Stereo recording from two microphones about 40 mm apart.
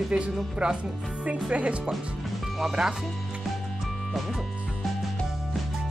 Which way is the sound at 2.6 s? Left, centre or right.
Centre.